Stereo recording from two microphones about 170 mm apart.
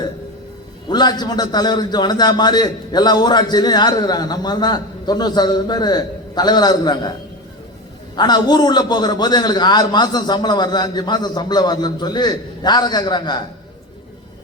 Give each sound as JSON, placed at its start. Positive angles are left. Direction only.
{"t": 0.9, "sound": "a man's voice", "side_deg": 25}
{"t": 8.1, "sound": "a man's voice", "side_deg": 25}